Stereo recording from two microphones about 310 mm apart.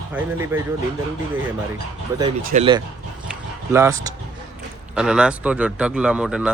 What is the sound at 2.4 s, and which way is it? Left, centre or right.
Speech, right.